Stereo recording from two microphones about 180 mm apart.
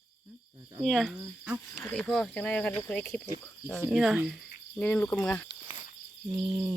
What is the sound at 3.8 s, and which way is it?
Speech, centre (ahead or behind).